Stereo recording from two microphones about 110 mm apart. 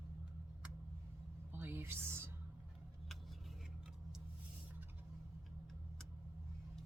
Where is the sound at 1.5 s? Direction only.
20° right (ahead or behind).